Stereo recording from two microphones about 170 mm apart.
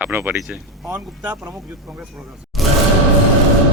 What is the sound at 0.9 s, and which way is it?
Speech, 10° right (ahead or behind).